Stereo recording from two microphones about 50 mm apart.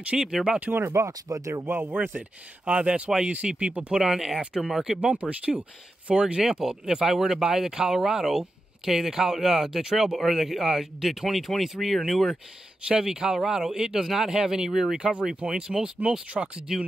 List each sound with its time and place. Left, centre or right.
0.1 s speech: centre
0.7 s speech: right
1.0 s speech: right
1.8 s speech: right
2.1 s speech: right
3.9 s speech: centre
5.1 s speech: right
6.6 s speech: centre
12.8 s speech: centre